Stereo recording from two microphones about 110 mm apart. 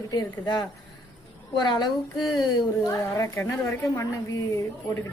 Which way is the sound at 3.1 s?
25° left (ahead or behind).